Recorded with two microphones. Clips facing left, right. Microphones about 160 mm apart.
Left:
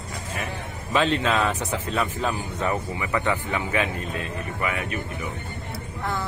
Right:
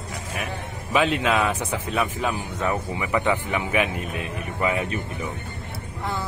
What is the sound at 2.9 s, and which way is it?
Speech, 15° right (ahead or behind).